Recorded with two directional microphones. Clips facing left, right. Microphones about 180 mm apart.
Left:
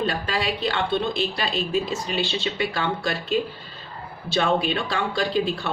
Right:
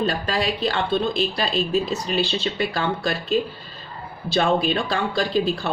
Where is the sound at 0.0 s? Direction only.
40° right (ahead or behind).